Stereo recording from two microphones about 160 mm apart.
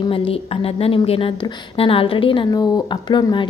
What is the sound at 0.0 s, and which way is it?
A woman's voice, 35° left (ahead or behind).